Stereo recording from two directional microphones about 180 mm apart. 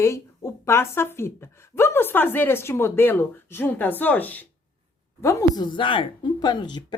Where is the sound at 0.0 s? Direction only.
15° left (ahead or behind).